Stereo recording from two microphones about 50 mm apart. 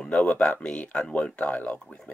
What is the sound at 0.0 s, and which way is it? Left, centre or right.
Speech, left.